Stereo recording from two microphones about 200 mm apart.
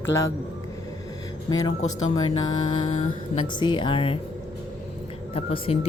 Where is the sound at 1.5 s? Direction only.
20° left (ahead or behind).